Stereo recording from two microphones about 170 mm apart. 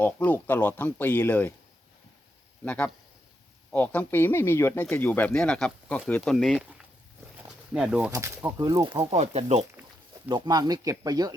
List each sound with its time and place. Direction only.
0.0 s speech: 10° left (ahead or behind)
2.6 s speech: 5° left (ahead or behind)
7.7 s speech: 5° right (ahead or behind)
8.5 s speech: 20° right (ahead or behind)
9.0 s speech: 40° right (ahead or behind)
10.2 s speech: 25° right (ahead or behind)